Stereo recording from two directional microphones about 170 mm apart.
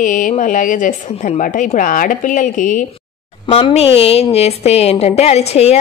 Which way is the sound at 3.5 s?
35° left (ahead or behind).